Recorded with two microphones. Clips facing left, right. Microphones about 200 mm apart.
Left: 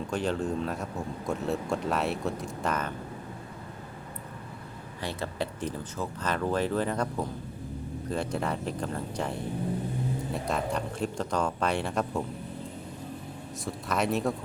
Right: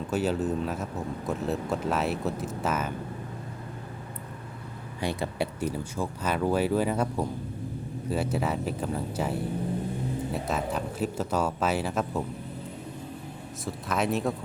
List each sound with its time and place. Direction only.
0.1 s speech: 5° right (ahead or behind)
4.9 s speech: 15° right (ahead or behind)
13.7 s speech: centre (ahead or behind)